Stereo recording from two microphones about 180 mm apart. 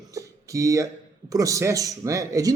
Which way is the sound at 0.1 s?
20° right (ahead or behind).